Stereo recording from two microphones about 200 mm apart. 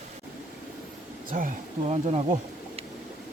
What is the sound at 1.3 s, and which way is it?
Speech, 40° right (ahead or behind).